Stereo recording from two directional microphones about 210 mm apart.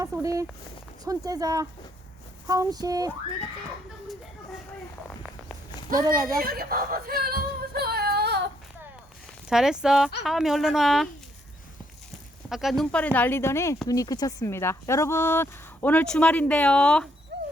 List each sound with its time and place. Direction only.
0.0 s speech: 15° right (ahead or behind)
6.0 s speech: 15° right (ahead or behind)
6.4 s a sound: 45° right (ahead or behind)
9.5 s a woman's voice: 5° right (ahead or behind)
12.5 s speech: centre (ahead or behind)
17.3 s dog: 55° right (ahead or behind)